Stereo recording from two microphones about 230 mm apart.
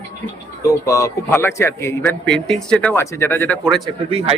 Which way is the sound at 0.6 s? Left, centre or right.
Centre.